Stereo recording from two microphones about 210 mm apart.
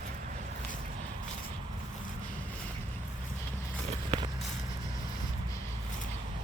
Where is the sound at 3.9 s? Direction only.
25° right (ahead or behind).